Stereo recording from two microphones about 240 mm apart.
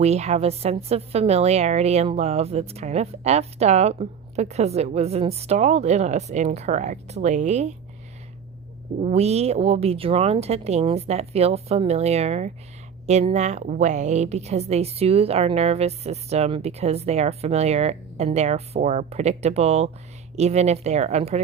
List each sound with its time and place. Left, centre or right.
0.0 s a woman's voice: right
9.0 s a woman's voice: right